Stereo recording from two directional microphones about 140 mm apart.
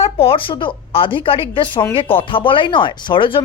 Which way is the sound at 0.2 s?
40° left (ahead or behind).